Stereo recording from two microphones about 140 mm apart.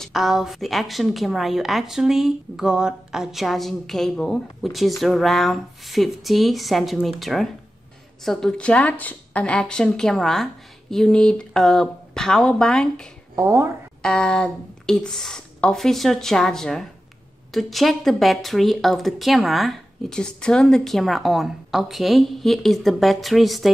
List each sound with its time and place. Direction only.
0.0 s a woman's voice: centre (ahead or behind)
13.4 s speech: 20° right (ahead or behind)
14.0 s a woman's voice: 5° left (ahead or behind)